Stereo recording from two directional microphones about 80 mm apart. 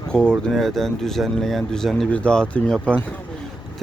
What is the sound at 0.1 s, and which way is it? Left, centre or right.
Speech, centre.